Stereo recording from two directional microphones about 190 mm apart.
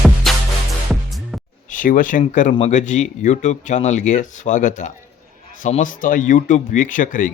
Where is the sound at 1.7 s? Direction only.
45° left (ahead or behind).